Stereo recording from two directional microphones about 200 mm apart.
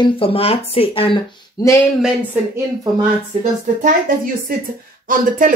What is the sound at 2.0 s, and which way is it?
Speech, 5° right (ahead or behind).